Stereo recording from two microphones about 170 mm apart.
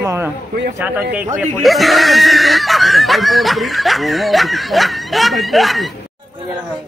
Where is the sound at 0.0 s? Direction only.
15° right (ahead or behind); by 5.9 s centre (ahead or behind).